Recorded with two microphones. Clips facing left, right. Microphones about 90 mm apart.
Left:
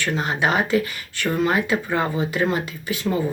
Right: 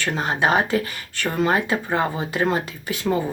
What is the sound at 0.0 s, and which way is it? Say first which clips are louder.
Speech: right 1 dB; 35° right (ahead or behind).